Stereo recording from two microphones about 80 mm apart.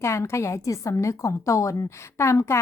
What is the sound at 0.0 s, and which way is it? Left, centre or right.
A woman's voice, left.